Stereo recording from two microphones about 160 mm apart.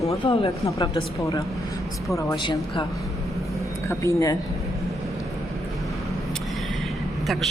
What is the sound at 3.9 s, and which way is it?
Speech, 20° left (ahead or behind).